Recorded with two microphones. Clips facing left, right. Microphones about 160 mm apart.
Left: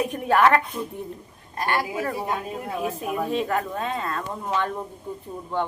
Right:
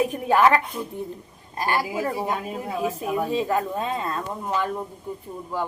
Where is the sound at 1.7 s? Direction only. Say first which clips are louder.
Even; 10° right (ahead or behind).